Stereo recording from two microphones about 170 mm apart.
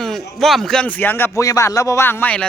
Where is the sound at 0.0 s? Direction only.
Centre (ahead or behind).